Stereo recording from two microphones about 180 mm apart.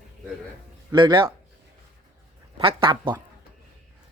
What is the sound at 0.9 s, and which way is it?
Speech, 25° right (ahead or behind).